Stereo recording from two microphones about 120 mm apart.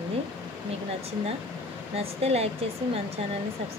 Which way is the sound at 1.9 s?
55° right (ahead or behind).